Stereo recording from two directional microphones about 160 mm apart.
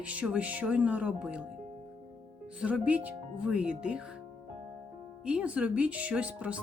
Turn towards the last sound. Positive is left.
turn(degrees=-10)  # may be behind; listen again after turning